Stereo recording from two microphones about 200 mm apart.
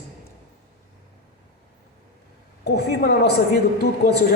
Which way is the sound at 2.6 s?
55° left (ahead or behind).